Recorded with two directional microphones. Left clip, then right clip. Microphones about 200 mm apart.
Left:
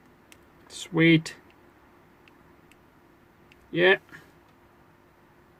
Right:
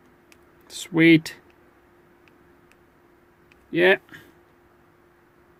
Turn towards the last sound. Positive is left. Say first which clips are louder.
# right 2 dB
turn(degrees=-45)  # may be behind; listen again after turning